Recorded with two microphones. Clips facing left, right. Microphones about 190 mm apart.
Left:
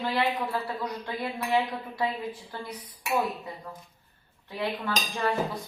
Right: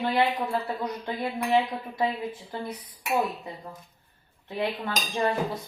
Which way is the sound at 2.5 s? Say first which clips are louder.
Right 4 dB; 20° right (ahead or behind).